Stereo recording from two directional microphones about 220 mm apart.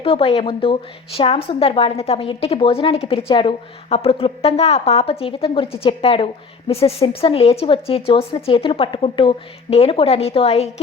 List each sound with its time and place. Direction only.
0.0 s a woman's voice: 25° left (ahead or behind)